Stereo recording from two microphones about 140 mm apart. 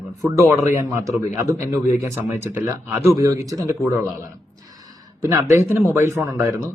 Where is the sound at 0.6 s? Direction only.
20° right (ahead or behind).